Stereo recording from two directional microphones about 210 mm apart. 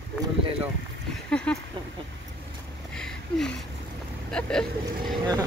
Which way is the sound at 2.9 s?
5° left (ahead or behind).